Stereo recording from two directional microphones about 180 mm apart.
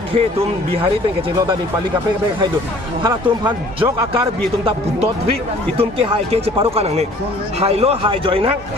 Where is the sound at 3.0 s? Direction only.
25° right (ahead or behind).